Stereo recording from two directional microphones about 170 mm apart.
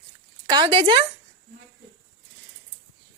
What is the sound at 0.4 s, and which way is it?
Speech, 25° right (ahead or behind).